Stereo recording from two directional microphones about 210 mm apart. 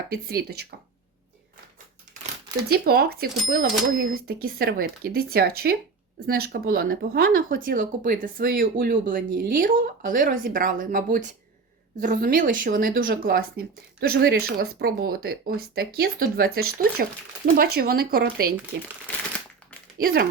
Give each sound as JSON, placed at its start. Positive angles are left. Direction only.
{"t": 0.1, "sound": "speech", "side_deg": -45}
{"t": 2.6, "sound": "speech", "side_deg": -45}
{"t": 19.1, "sound": "a sound", "side_deg": 10}
{"t": 20.0, "sound": "speech", "side_deg": -45}